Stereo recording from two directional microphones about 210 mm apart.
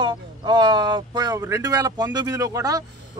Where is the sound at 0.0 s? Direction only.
20° right (ahead or behind).